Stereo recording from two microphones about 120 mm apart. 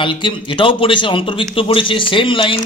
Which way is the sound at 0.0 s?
45° left (ahead or behind).